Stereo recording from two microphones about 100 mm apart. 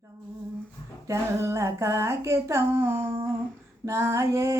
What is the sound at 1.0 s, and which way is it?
Female singing, 30° right (ahead or behind).